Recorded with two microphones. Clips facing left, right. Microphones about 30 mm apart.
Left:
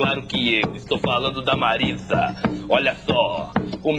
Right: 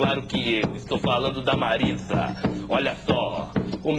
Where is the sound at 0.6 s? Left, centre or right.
Left.